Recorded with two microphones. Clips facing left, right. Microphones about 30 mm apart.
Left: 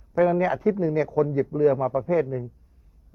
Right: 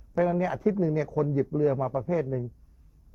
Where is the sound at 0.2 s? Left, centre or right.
Left.